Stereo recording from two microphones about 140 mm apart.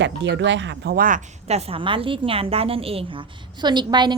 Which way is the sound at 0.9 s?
75° right (ahead or behind).